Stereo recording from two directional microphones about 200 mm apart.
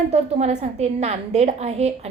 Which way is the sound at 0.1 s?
35° right (ahead or behind).